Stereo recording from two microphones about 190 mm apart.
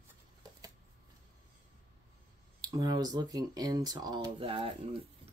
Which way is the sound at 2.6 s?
20° right (ahead or behind).